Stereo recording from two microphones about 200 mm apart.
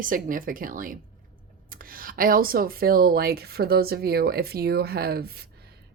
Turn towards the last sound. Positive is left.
turn(degrees=-50)  # may be behind; listen again after turning